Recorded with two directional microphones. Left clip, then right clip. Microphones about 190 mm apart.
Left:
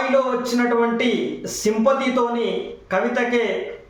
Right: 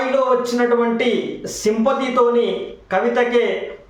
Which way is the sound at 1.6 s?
15° right (ahead or behind).